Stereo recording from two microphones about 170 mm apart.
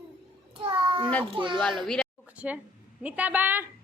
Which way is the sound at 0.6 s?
30° right (ahead or behind).